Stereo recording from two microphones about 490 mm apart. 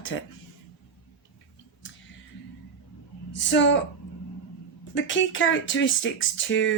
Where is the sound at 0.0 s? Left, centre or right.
Left.